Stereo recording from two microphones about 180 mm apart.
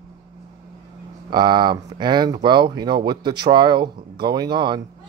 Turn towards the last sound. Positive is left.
turn(degrees=-25)  # may be behind; listen again after turning